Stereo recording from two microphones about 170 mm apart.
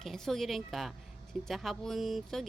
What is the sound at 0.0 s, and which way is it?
Speech, centre (ahead or behind).